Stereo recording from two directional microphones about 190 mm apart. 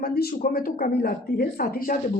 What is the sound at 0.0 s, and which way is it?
A woman's voice, 55° left (ahead or behind).